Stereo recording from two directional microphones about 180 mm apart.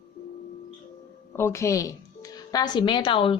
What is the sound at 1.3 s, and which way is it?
A woman's voice, 15° left (ahead or behind).